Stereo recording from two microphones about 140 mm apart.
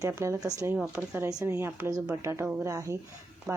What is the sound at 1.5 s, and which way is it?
A woman's voice, 15° right (ahead or behind).